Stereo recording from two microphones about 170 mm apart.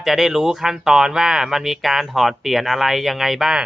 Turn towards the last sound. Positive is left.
turn(degrees=-5)  # may be behind; listen again after turning